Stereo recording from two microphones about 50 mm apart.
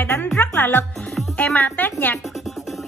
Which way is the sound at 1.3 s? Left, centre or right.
Left.